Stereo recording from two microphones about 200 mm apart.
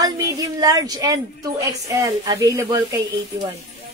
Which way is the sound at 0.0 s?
20° right (ahead or behind).